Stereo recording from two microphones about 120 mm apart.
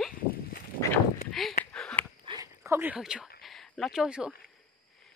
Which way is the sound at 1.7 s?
5° left (ahead or behind).